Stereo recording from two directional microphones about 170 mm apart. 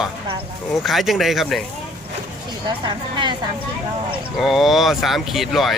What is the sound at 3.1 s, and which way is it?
Speech, 25° right (ahead or behind).